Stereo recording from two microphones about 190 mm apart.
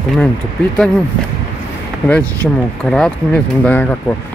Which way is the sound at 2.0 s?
5° left (ahead or behind).